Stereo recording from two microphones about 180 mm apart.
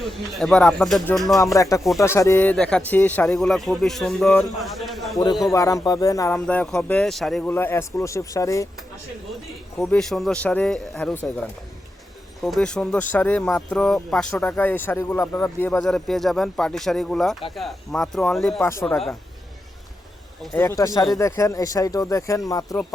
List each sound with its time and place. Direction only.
0.0 s speech: centre (ahead or behind)
1.5 s speech: 15° left (ahead or behind); by 5.1 s centre (ahead or behind)
5.1 s a man's voice: 20° left (ahead or behind)
6.4 s speech: 5° left (ahead or behind)
9.7 s speech: centre (ahead or behind)
12.4 s speech: centre (ahead or behind)
18.6 s speech: 15° left (ahead or behind)
18.9 s speech: centre (ahead or behind)
20.6 s speech: 15° left (ahead or behind)